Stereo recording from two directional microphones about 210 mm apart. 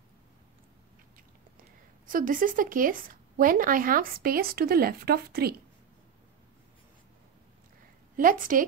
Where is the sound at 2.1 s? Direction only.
40° right (ahead or behind).